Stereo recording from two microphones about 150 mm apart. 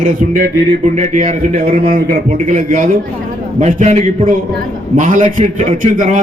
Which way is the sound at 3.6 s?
50° right (ahead or behind).